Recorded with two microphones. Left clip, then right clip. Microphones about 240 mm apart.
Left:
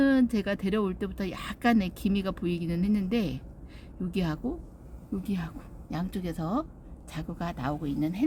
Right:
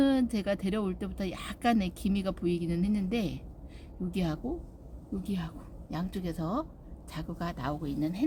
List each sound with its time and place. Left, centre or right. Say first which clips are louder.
0.0 s a woman's voice: left 3 dB; centre